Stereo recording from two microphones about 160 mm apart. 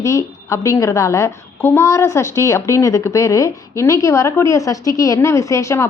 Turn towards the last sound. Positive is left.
turn(degrees=20)  # may be behind; listen again after turning